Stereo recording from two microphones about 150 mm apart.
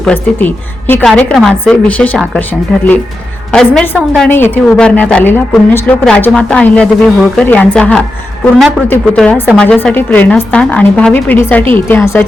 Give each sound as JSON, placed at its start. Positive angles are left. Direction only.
{"t": 0.0, "sound": "a woman's voice", "side_deg": 10}